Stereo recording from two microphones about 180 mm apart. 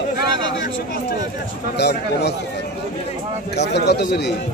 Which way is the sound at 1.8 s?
70° left (ahead or behind).